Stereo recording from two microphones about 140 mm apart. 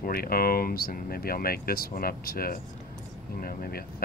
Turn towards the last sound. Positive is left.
turn(degrees=90)